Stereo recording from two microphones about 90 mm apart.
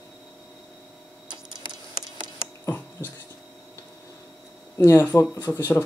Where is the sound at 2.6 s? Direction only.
20° left (ahead or behind).